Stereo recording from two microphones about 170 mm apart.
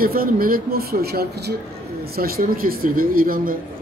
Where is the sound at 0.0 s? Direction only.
60° right (ahead or behind).